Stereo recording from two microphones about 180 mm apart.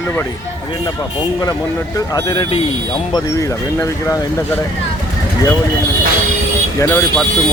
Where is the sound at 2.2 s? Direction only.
25° left (ahead or behind).